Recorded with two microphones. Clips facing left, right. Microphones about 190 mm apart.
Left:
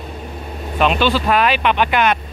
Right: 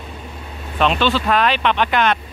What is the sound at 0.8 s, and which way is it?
Speech, 5° left (ahead or behind).